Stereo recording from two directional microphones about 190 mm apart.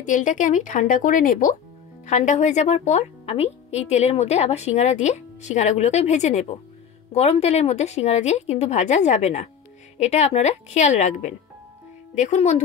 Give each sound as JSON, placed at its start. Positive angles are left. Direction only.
{"t": 0.0, "sound": "a woman's voice", "side_deg": 40}